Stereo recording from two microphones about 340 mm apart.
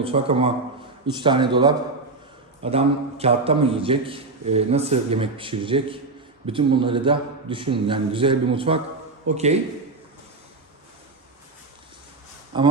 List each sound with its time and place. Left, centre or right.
0.0 s a man's voice: centre
12.5 s a man's voice: centre